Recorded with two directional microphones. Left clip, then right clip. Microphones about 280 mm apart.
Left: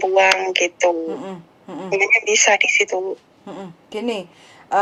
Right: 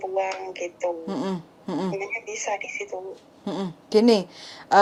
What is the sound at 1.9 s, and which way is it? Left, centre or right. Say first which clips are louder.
A woman's voice: left 15 dB; left.